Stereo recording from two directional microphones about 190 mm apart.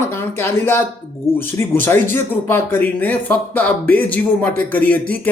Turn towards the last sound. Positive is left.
turn(degrees=10)  # may be behind; listen again after turning